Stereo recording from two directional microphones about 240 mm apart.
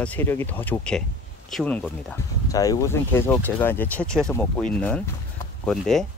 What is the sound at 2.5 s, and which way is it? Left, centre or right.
Speech, centre.